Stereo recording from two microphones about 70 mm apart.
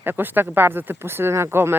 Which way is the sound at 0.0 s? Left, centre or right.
Right.